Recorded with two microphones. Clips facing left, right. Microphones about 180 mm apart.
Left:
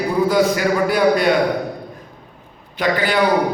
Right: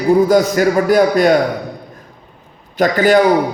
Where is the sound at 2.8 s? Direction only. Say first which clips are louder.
Right 7 dB; 45° right (ahead or behind).